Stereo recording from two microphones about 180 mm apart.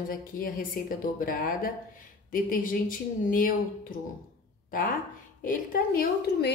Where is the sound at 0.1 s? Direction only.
50° left (ahead or behind).